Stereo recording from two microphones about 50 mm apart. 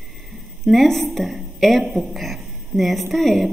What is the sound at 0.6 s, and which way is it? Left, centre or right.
A woman's voice, centre.